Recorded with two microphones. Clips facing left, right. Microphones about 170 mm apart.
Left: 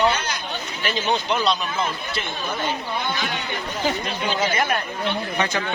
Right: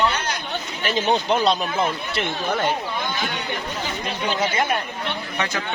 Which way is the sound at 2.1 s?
65° right (ahead or behind).